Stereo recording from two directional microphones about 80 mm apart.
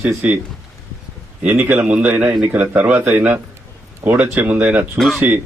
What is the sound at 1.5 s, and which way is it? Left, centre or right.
Speech, right.